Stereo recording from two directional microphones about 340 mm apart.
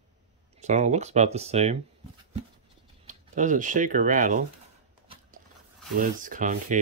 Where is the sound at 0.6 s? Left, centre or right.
Right.